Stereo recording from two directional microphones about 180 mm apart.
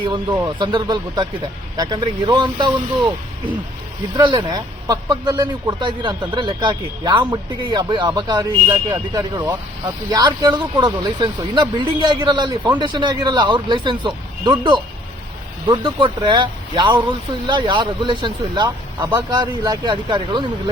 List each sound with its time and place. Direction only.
0.3 s speech: 20° right (ahead or behind)
4.1 s speech: 25° right (ahead or behind)